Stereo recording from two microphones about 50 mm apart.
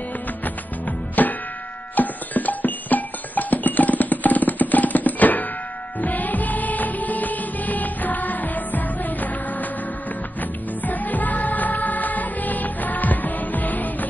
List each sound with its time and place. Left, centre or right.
1.2 s music: left
10.8 s music: left